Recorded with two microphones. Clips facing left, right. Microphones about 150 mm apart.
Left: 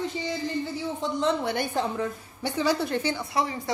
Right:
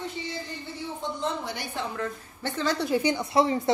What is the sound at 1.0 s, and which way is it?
Speech, 90° left.